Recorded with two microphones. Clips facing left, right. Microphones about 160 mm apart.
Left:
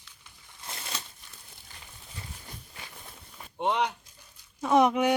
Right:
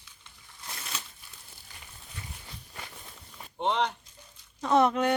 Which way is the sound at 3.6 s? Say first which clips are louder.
Even; 10° left (ahead or behind).